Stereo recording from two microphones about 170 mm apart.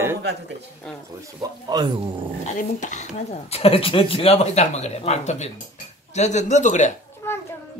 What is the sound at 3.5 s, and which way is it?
Speech, 35° left (ahead or behind).